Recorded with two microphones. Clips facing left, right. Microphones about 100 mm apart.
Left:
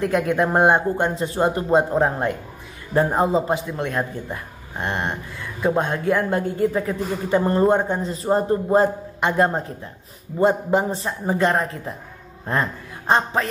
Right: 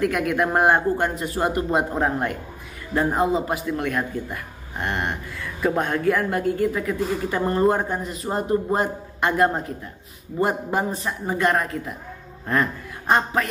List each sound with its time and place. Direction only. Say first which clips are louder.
0.0 s speech: left 2 dB; 30° left (ahead or behind)